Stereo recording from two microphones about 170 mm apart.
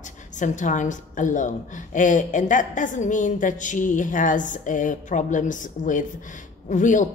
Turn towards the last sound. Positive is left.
turn(degrees=45)  # may be behind; listen again after turning